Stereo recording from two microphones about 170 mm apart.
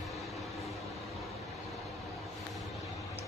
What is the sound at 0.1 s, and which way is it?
Vehicle, centre (ahead or behind).